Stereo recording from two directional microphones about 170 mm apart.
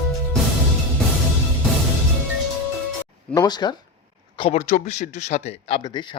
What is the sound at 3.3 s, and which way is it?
Speech, 20° left (ahead or behind).